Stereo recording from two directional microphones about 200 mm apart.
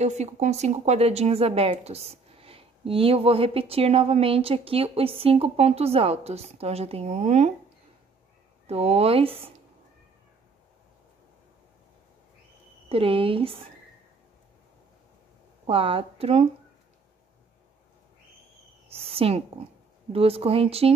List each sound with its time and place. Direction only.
0.0 s speech: 35° right (ahead or behind)
8.6 s speech: 30° right (ahead or behind)
12.8 s speech: 30° right (ahead or behind)
15.6 s speech: 30° right (ahead or behind)
19.0 s speech: 30° right (ahead or behind)